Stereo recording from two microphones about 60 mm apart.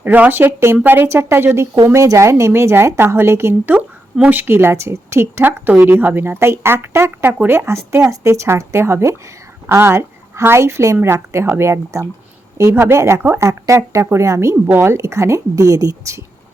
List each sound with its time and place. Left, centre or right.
0.0 s speech: right
1.0 s speech: right
1.9 s speech: right
4.3 s speech: right
6.5 s a woman's voice: right
13.5 s a woman's voice: right